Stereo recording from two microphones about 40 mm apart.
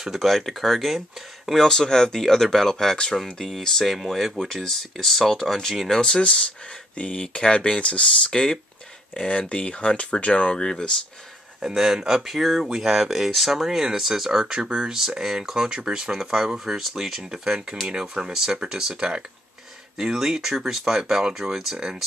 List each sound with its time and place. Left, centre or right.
0.0 s speech: centre
1.6 s speech: centre
5.9 s speech: left
8.3 s speech: centre
11.6 s speech: centre
14.4 s speech: centre